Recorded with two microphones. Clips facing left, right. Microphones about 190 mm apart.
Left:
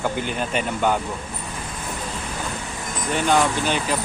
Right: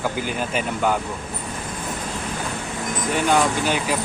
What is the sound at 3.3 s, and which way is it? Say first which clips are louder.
Speech: even; 10° right (ahead or behind).